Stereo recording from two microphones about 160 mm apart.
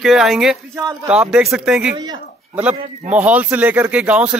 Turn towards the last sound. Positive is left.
turn(degrees=-10)  # may be behind; listen again after turning